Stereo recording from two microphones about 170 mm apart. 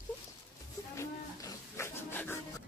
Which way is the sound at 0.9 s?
20° left (ahead or behind).